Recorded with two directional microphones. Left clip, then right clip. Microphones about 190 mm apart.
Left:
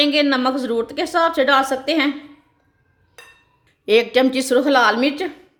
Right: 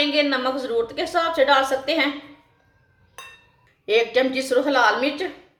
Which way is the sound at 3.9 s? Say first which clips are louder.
Left 4 dB; 55° left (ahead or behind).